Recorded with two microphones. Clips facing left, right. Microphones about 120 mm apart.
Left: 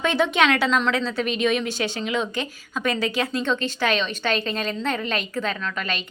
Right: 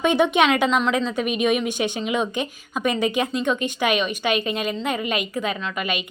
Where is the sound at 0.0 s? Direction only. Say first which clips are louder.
Right 2 dB; 15° right (ahead or behind).